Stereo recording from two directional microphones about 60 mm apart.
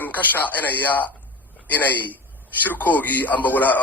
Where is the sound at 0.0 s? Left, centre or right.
Left.